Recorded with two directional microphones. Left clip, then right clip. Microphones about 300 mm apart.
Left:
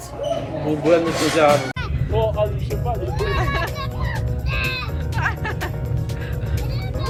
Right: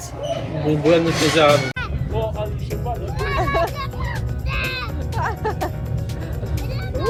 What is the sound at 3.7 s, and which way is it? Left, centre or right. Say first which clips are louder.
Music: even; centre.